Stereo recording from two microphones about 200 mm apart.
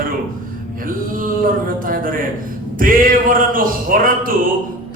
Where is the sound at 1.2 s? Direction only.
45° right (ahead or behind).